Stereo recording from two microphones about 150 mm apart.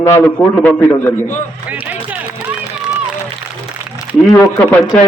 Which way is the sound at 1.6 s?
10° right (ahead or behind).